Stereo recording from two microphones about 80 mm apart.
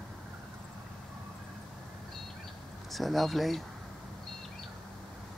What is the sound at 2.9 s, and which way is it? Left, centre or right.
Speech, centre.